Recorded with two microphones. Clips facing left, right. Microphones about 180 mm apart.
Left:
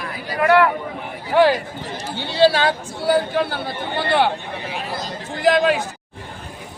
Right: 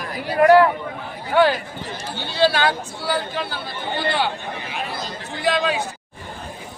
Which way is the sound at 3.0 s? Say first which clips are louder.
Left 6 dB; 50° left (ahead or behind).